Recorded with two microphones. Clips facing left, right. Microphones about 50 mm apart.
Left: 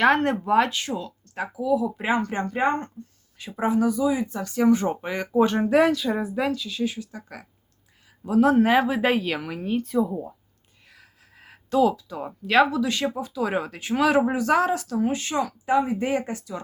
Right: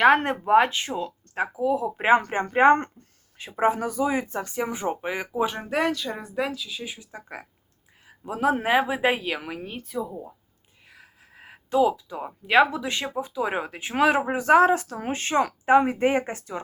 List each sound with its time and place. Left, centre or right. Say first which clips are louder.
0.0 s speech: right 1 dB; centre; by 2.6 s right
2.6 s speech: right 7 dB; right
3.3 s speech: even; right
4.4 s a woman's voice: left 7 dB; centre
7.0 s a woman's voice: left 1 dB; right; by 10.1 s centre
10.1 s speech: left 6 dB; centre
10.9 s speech: right 3 dB; centre; by 16.6 s right